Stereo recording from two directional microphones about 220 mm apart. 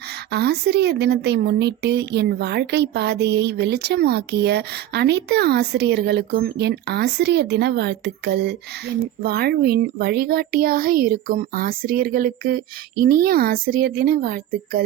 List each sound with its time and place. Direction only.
0.3 s speech: 45° right (ahead or behind)